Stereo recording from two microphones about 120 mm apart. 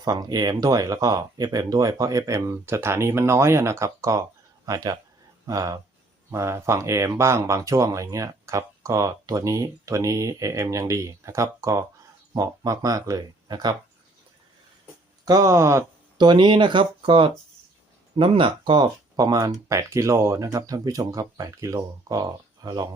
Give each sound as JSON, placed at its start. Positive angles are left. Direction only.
{"t": 0.0, "sound": "speech", "side_deg": -30}
{"t": 15.2, "sound": "speech", "side_deg": -30}
{"t": 16.1, "sound": "speech", "side_deg": -40}